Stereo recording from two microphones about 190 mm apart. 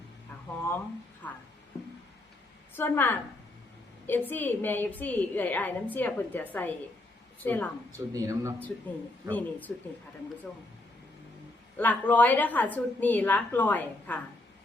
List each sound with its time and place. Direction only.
1.2 s a woman's voice: 10° left (ahead or behind)
2.7 s a woman's voice: 10° left (ahead or behind)
7.9 s speech: 15° right (ahead or behind)
9.3 s a woman's voice: 10° left (ahead or behind)
11.8 s a woman's voice: 10° left (ahead or behind)